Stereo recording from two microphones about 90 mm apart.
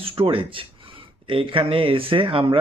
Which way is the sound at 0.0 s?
85° right.